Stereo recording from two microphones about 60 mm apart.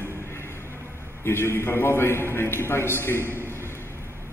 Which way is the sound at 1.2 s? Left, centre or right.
Left.